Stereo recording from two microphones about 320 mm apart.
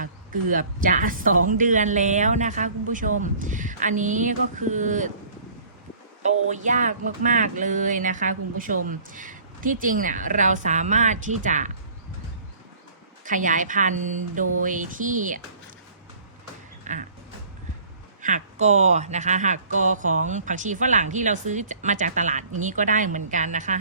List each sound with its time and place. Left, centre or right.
0.5 s speech: right
6.5 s speech: right
13.2 s speech: right
16.8 s music: right
18.2 s speech: right